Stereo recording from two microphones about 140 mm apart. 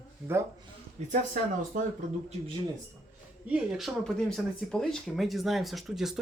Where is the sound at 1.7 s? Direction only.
70° right (ahead or behind).